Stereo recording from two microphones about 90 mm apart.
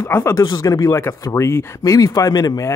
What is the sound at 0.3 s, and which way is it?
Speech, 45° left (ahead or behind).